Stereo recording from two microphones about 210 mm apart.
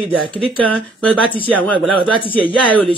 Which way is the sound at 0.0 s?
20° right (ahead or behind).